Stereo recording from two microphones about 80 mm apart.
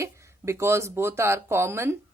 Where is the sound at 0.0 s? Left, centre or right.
Right.